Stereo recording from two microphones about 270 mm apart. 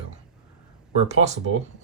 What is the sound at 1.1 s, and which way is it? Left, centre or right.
Speech, right.